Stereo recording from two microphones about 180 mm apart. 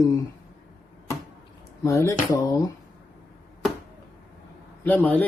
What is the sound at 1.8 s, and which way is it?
Speech, 15° left (ahead or behind).